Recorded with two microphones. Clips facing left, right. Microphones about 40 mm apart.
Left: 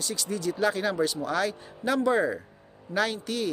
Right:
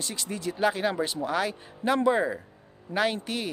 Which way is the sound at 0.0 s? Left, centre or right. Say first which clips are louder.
Left 3 dB; right.